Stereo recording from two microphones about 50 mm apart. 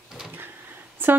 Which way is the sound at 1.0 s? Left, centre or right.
Right.